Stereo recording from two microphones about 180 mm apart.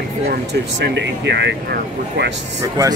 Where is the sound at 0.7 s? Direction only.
75° right (ahead or behind).